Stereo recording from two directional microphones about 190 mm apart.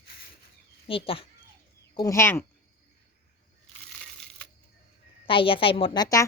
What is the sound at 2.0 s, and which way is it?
Speech, 15° left (ahead or behind).